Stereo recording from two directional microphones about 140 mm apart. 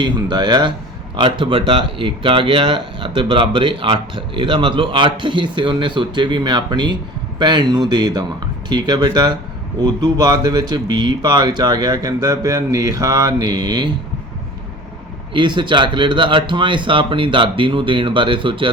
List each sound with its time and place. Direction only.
0.0 s speech: 30° right (ahead or behind)
15.3 s speech: 35° right (ahead or behind)